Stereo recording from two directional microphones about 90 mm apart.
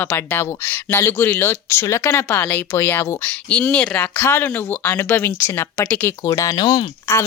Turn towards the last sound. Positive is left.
turn(degrees=30)  # may be behind; listen again after turning